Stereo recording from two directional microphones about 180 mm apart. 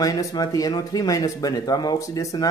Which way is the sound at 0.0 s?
20° left (ahead or behind).